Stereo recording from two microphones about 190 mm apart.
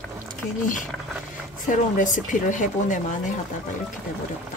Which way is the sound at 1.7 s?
40° left (ahead or behind).